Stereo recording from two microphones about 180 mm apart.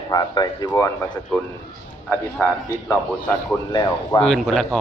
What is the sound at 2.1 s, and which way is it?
A man's voice, 15° left (ahead or behind).